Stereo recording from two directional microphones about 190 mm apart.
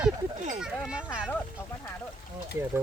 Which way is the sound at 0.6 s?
5° right (ahead or behind).